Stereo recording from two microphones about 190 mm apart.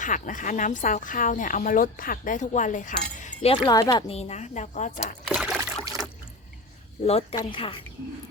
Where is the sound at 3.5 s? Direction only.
20° left (ahead or behind); by 5.1 s 40° left (ahead or behind).